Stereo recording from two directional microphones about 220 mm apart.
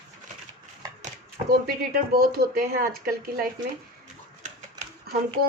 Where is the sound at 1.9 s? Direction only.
45° right (ahead or behind).